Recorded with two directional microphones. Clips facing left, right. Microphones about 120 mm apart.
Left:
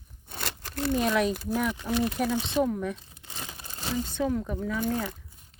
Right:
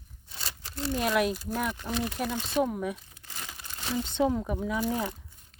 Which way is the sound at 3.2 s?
25° left (ahead or behind).